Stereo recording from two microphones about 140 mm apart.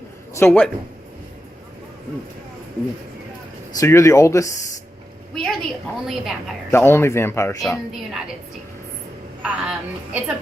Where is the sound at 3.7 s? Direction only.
20° left (ahead or behind).